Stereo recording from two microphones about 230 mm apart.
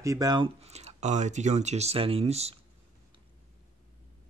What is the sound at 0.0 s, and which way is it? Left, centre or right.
Speech, centre.